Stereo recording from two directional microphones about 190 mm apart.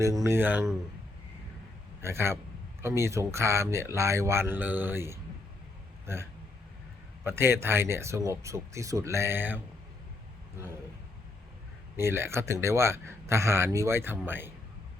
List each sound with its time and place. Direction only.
0.3 s speech: 10° right (ahead or behind)
2.0 s a man's voice: 15° right (ahead or behind)
7.3 s speech: 10° right (ahead or behind)
11.9 s speech: 15° right (ahead or behind)